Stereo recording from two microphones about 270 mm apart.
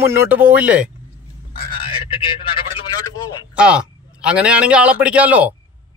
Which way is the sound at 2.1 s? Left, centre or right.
Centre.